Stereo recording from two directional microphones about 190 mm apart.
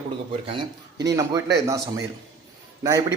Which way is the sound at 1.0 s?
15° right (ahead or behind).